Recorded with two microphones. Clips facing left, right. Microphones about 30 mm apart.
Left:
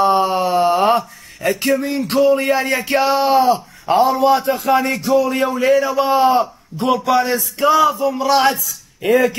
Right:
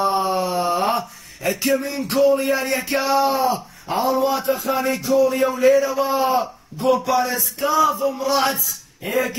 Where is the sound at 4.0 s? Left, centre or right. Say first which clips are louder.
Left 5 dB; left.